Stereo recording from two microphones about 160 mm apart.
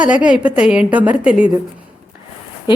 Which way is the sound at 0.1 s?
5° right (ahead or behind).